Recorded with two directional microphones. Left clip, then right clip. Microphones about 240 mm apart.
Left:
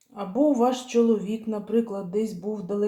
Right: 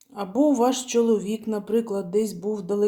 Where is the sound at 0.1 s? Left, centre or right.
Right.